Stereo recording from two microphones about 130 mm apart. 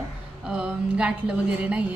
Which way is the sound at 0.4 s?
5° right (ahead or behind).